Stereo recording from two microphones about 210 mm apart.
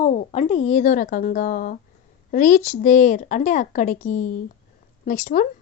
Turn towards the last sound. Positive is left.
turn(degrees=35)  # may be behind; listen again after turning